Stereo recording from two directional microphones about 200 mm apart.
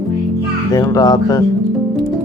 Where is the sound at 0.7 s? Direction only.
20° left (ahead or behind).